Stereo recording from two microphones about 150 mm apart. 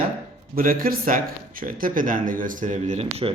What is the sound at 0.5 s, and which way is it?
A woman's voice, 75° right (ahead or behind).